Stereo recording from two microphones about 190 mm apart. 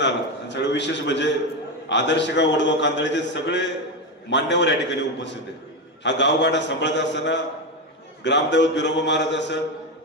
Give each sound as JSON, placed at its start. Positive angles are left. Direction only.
{"t": 0.0, "sound": "a man's voice", "side_deg": 65}